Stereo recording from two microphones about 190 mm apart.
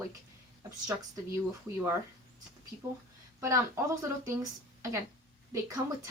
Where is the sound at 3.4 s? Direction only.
15° right (ahead or behind).